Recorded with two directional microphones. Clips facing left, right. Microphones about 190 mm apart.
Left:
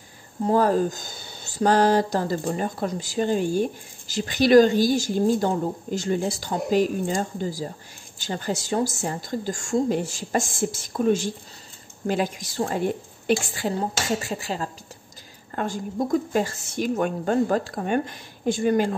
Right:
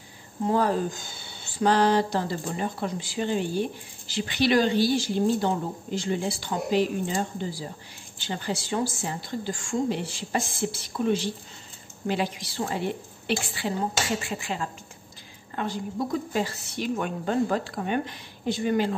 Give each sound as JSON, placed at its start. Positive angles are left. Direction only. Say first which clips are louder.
{"t": 0.5, "sound": "speech", "louder": "left 4 dB", "side_deg": 40}